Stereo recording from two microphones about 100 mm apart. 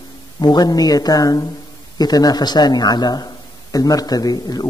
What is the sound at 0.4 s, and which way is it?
Speech, 45° left (ahead or behind).